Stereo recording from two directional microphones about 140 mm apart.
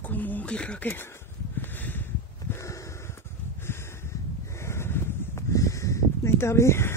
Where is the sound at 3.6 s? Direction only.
20° left (ahead or behind).